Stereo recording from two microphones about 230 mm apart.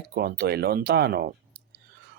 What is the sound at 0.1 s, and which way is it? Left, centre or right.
Speech, right.